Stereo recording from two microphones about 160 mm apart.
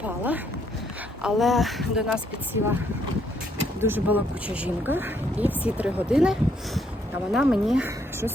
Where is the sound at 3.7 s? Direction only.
15° right (ahead or behind).